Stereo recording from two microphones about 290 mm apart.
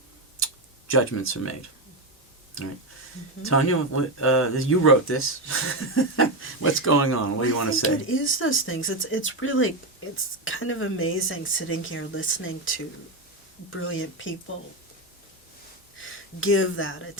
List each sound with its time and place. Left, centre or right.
0.3 s tick-tock: left
3.4 s speech: left
16.0 s speech: left